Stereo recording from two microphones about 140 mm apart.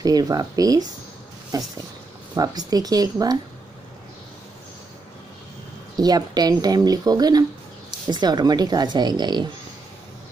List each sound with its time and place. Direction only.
0.0 s speech: 25° right (ahead or behind)
5.9 s speech: 30° right (ahead or behind)